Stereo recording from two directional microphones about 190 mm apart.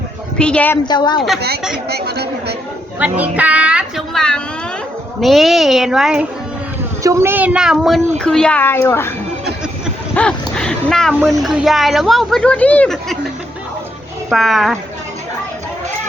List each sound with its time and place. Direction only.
0.3 s speech: 5° left (ahead or behind)
0.9 s speech: 25° left (ahead or behind)
1.9 s speech: 55° right (ahead or behind)
3.0 s speech: 10° right (ahead or behind)
7.0 s a child's voice: 15° right (ahead or behind); by 9.1 s 15° left (ahead or behind)
10.2 s a sound: 5° left (ahead or behind)
11.2 s speech: 5° right (ahead or behind)
14.3 s speech: centre (ahead or behind)